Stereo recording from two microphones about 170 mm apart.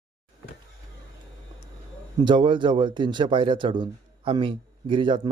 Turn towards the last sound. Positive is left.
turn(degrees=-30)  # may be behind; listen again after turning